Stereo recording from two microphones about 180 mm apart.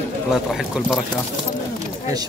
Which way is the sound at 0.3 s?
5° right (ahead or behind).